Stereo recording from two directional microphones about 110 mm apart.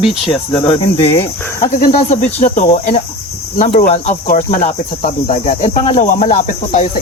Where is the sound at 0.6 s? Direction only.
60° left (ahead or behind).